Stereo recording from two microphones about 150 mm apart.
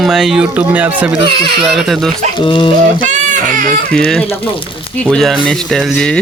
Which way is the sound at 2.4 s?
35° left (ahead or behind).